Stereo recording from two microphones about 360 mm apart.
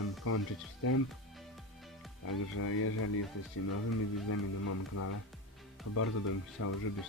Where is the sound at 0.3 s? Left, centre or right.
Left.